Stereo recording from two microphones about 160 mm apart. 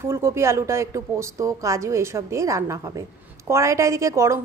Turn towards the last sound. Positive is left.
turn(degrees=-20)  # may be behind; listen again after turning